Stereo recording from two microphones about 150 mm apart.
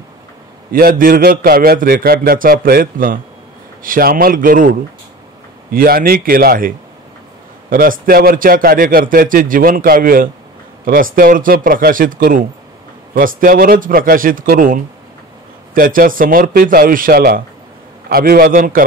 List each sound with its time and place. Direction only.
0.7 s speech: 75° right (ahead or behind)
7.7 s speech: 70° right (ahead or behind)